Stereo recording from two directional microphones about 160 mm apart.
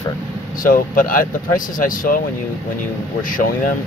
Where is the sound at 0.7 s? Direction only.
60° left (ahead or behind).